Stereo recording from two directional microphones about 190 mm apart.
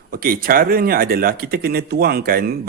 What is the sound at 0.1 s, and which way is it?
Speech, 50° right (ahead or behind).